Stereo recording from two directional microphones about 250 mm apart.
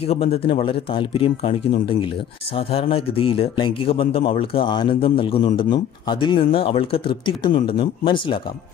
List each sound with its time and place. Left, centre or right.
0.0 s a man's voice: left